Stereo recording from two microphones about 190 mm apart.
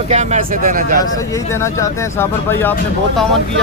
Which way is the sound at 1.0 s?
15° left (ahead or behind).